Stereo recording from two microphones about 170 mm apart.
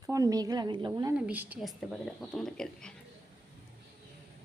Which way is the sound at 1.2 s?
10° right (ahead or behind).